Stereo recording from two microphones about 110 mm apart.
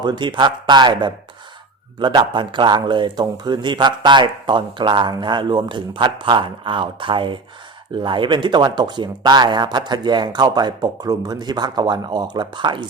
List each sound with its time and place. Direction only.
0.0 s speech: 40° right (ahead or behind)